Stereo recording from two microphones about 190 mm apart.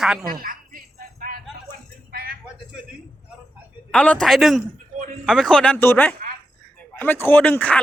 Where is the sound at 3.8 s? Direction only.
5° left (ahead or behind).